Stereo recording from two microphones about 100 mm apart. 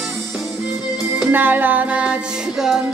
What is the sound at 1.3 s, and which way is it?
Music, 20° right (ahead or behind).